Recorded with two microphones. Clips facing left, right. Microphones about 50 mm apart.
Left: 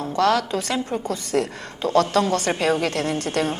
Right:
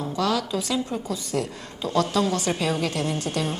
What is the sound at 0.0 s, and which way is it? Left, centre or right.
A woman's voice, left.